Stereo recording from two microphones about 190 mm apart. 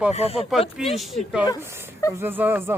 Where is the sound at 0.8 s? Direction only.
Centre (ahead or behind).